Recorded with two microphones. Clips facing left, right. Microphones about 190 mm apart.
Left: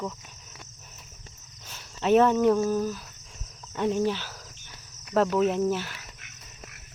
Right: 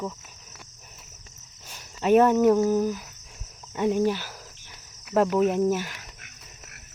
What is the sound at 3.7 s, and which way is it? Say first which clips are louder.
Insect: right 2 dB; 10° right (ahead or behind).